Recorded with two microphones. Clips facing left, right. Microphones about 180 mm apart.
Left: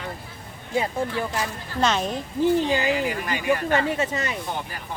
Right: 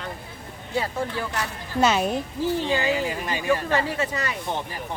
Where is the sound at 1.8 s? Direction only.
5° right (ahead or behind).